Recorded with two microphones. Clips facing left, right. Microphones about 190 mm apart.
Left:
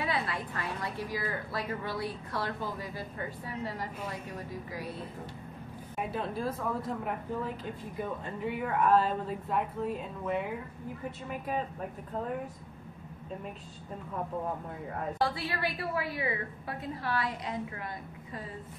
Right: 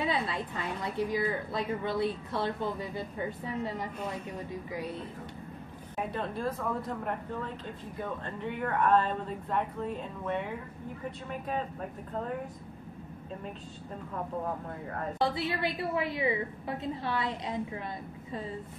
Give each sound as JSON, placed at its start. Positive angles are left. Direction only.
{"t": 0.0, "sound": "a sound", "side_deg": -20}
{"t": 0.9, "sound": "a woman's voice", "side_deg": -20}
{"t": 5.9, "sound": "speech", "side_deg": 5}
{"t": 14.9, "sound": "speech", "side_deg": 5}
{"t": 15.2, "sound": "a woman's voice", "side_deg": -20}